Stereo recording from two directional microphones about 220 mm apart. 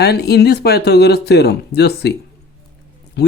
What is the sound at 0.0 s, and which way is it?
Speech, 45° left (ahead or behind).